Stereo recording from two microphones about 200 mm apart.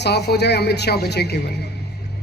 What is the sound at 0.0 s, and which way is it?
A man's voice, 55° left (ahead or behind).